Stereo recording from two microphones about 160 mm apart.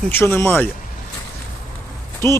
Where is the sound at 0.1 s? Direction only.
15° left (ahead or behind).